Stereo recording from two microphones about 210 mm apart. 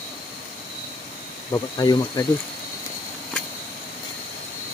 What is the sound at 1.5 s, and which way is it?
Speech, 20° left (ahead or behind).